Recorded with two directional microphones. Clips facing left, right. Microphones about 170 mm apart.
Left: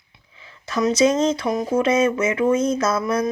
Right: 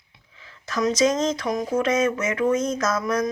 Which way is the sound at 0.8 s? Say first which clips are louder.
Left 3 dB; 10° left (ahead or behind).